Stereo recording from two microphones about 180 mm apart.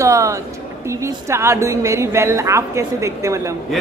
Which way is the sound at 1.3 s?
15° right (ahead or behind).